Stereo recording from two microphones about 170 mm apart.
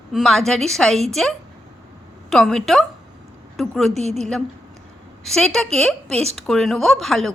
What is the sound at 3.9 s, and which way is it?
Speech, 40° right (ahead or behind).